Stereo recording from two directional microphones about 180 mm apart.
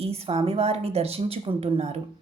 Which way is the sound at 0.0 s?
35° right (ahead or behind).